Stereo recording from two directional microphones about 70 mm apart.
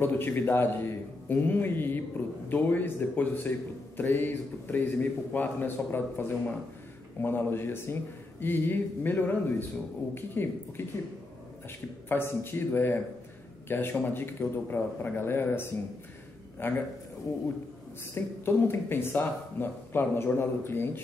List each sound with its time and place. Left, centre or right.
0.0 s a man's voice: left
12.1 s speech: left
18.1 s speech: left